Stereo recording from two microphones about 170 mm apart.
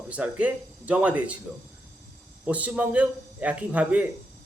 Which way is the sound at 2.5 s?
10° right (ahead or behind).